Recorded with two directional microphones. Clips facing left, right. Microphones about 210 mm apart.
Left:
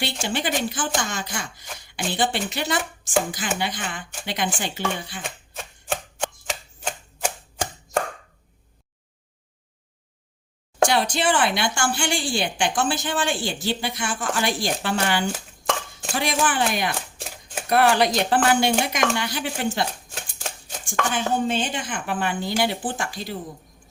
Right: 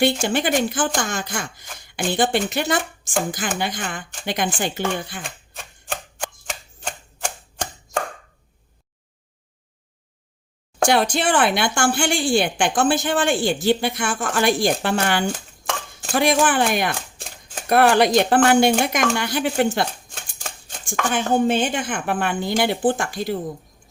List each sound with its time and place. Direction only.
0.0 s a woman's voice: 50° right (ahead or behind)
6.4 s chopping: centre (ahead or behind)
10.8 s a woman's voice: 55° right (ahead or behind)
17.2 s typewriter: 5° left (ahead or behind)
17.7 s a woman's voice: 55° right (ahead or behind)
20.1 s a sound: 5° left (ahead or behind)
21.1 s a woman's voice: 55° right (ahead or behind)